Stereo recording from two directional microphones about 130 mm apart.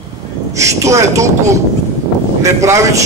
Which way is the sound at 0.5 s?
25° right (ahead or behind).